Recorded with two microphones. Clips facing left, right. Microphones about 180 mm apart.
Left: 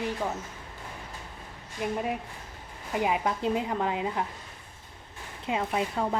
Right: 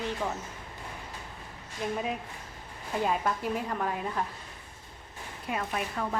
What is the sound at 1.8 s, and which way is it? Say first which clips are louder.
A woman's voice: left 2 dB; 5° left (ahead or behind).